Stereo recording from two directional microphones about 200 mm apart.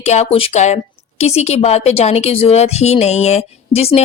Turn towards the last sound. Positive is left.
turn(degrees=30)  # may be behind; listen again after turning